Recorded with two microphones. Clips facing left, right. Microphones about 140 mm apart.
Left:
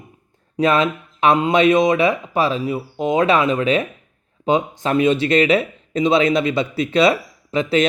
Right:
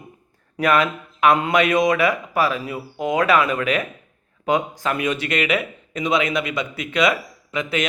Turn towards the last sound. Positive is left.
turn(degrees=30)  # may be behind; listen again after turning